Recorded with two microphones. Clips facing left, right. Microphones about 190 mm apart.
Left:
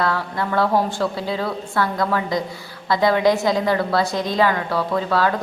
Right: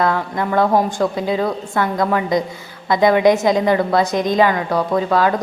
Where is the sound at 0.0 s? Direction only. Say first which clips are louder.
Right 4 dB; 20° right (ahead or behind).